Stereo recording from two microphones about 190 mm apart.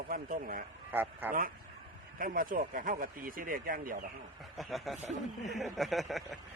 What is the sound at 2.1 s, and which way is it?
A man's voice, 45° right (ahead or behind).